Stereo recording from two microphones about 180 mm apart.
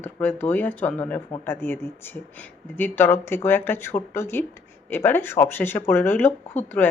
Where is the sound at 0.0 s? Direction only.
10° left (ahead or behind).